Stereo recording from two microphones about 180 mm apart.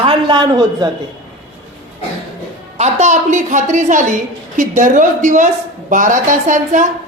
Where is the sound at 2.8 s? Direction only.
40° right (ahead or behind).